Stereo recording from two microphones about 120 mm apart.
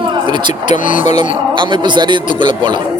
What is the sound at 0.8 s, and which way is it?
Speech, 85° left.